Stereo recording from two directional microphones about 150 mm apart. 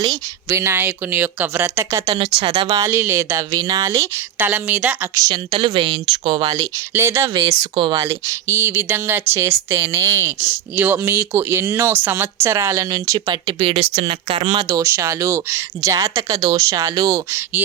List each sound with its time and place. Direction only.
0.4 s speech: 15° right (ahead or behind)
2.1 s speech: 35° right (ahead or behind)
2.7 s speech: 20° right (ahead or behind)
5.1 s speech: 25° right (ahead or behind)
6.6 s speech: 20° right (ahead or behind)
7.3 s speech: 35° right (ahead or behind)
8.0 s speech: 20° right (ahead or behind)